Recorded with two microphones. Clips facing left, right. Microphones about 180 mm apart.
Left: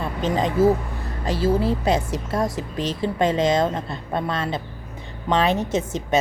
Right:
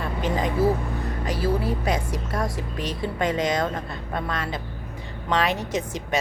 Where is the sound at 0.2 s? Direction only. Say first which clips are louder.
Left 4 dB; 25° left (ahead or behind).